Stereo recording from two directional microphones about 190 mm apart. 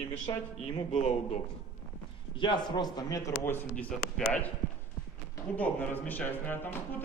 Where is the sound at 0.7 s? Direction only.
35° left (ahead or behind).